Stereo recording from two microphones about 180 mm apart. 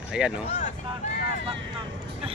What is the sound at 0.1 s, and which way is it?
Speech, 5° right (ahead or behind).